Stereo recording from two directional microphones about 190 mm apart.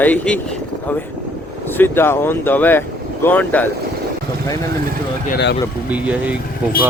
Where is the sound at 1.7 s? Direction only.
10° left (ahead or behind).